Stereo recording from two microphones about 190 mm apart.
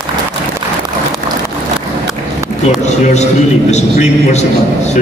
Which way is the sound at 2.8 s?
35° left (ahead or behind).